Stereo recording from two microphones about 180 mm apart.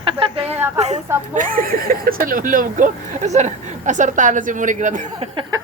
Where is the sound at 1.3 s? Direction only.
50° right (ahead or behind).